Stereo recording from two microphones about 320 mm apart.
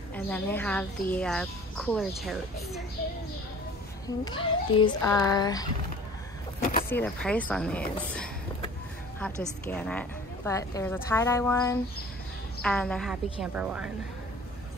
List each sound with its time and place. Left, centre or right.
0.1 s speech: centre
4.2 s speech: centre
6.6 s a sound: left
6.9 s speech: centre